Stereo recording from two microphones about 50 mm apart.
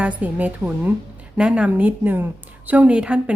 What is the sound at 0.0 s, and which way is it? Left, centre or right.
Speech, right.